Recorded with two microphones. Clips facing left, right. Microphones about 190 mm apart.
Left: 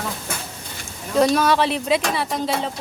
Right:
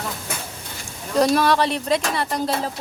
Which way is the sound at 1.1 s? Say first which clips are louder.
Even; centre (ahead or behind).